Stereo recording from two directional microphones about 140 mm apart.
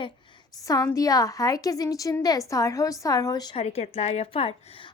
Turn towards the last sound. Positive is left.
turn(degrees=40)  # may be behind; listen again after turning